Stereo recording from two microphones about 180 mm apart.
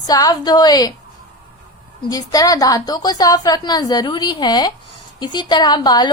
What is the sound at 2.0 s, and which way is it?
A woman's voice, 20° left (ahead or behind).